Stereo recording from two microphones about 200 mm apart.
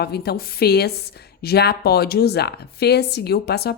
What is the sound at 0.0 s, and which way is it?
A woman's voice, 55° left (ahead or behind).